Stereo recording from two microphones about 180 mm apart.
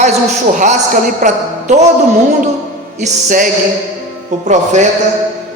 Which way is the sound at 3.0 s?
50° right (ahead or behind).